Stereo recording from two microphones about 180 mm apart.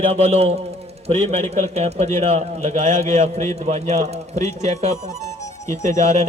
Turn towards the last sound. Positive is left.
turn(degrees=15)  # may be behind; listen again after turning